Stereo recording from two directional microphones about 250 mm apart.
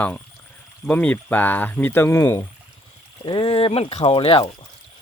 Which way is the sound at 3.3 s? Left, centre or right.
Left.